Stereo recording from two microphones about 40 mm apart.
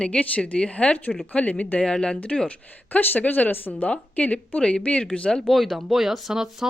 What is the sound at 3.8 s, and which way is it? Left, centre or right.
Speech, left.